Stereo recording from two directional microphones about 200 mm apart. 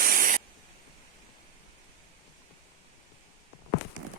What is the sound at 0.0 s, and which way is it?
Spray, 45° right (ahead or behind).